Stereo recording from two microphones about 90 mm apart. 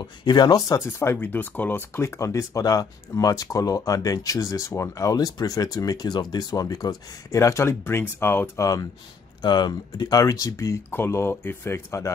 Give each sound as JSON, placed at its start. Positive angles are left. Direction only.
{"t": 0.0, "sound": "speech", "side_deg": 55}
{"t": 0.7, "sound": "speech", "side_deg": 30}
{"t": 7.3, "sound": "speech", "side_deg": 30}
{"t": 9.4, "sound": "speech", "side_deg": 55}